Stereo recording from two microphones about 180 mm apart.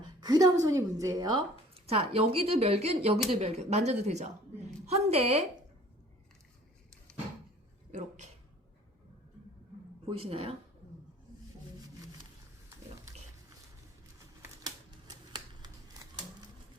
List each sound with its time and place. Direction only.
0.2 s a woman's voice: 20° right (ahead or behind)
1.7 s speech: 35° right (ahead or behind)
7.9 s speech: 40° right (ahead or behind)
10.1 s speech: 30° right (ahead or behind)
14.6 s typewriter: 25° right (ahead or behind)